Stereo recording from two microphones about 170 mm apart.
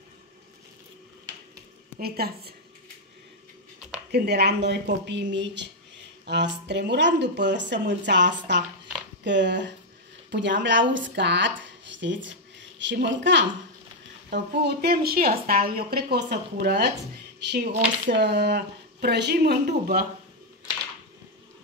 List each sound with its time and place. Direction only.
2.0 s a woman's voice: 65° right (ahead or behind)
4.1 s speech: 75° right (ahead or behind); by 13.5 s 90° right
14.3 s a woman's voice: 75° right (ahead or behind)
17.5 s speech: 85° right; by 20.1 s 65° right (ahead or behind)